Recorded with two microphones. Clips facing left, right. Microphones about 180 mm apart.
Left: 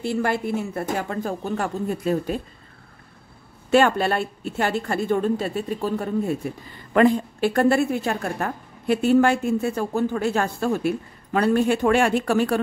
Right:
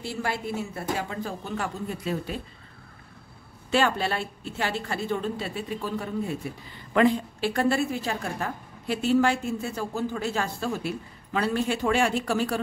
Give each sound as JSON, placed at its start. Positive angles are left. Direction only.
{"t": 0.0, "sound": "a woman's voice", "side_deg": 55}
{"t": 3.7, "sound": "a woman's voice", "side_deg": 50}